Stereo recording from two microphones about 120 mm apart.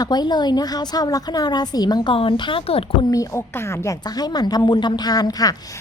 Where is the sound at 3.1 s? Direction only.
25° left (ahead or behind).